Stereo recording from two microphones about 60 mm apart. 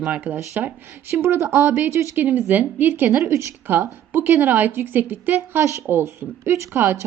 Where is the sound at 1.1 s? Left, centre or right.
Right.